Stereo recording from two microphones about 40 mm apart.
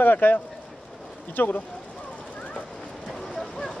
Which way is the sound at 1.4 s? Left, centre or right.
Left.